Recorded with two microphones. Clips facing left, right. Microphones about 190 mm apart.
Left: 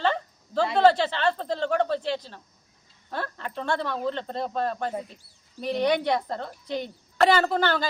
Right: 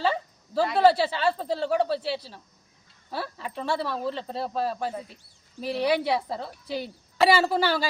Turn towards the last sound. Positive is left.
turn(degrees=-10)  # may be behind; listen again after turning